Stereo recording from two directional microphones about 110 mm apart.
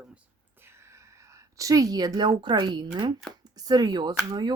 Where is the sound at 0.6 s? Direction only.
25° right (ahead or behind); by 4.5 s 40° right (ahead or behind).